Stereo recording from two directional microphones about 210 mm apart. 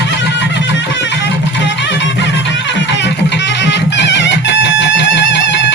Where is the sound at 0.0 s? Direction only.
55° left (ahead or behind).